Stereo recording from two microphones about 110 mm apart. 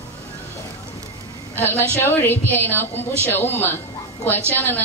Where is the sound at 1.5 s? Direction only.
20° left (ahead or behind).